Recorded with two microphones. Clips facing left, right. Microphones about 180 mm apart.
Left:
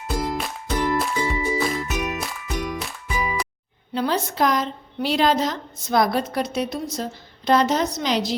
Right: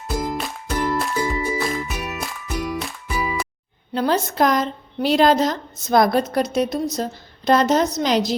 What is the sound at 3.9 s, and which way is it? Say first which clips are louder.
A woman's voice: right 3 dB; 45° right (ahead or behind).